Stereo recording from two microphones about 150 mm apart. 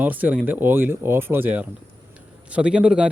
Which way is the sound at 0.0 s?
10° right (ahead or behind).